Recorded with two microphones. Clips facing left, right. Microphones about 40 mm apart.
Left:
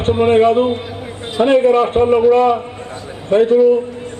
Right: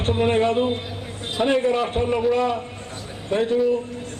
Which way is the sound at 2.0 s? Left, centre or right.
Left.